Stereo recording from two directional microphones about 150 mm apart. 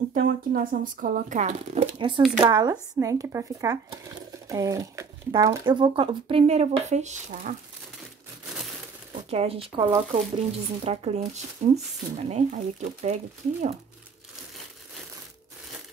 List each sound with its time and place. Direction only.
0.1 s speech: 80° right; by 1.9 s 50° right (ahead or behind)
2.0 s speech: 30° right (ahead or behind); by 7.5 s 55° right (ahead or behind)
9.3 s speech: 40° right (ahead or behind)